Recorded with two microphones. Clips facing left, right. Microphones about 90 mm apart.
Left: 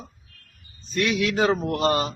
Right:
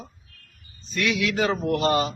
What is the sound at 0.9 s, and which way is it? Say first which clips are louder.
Speech: left 2 dB; 40° left (ahead or behind).